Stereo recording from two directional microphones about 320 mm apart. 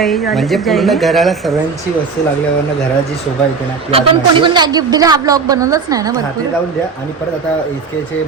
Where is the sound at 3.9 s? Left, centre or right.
Centre.